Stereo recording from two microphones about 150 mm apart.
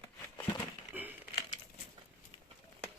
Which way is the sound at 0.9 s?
10° right (ahead or behind).